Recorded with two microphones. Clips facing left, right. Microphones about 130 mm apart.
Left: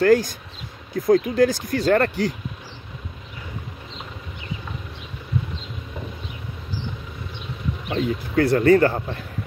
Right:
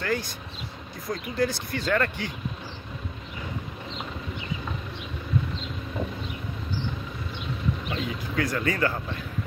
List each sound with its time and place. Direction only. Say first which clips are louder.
0.0 s speech: left 12 dB; 45° left (ahead or behind)
7.9 s speech: left 7 dB; 35° left (ahead or behind)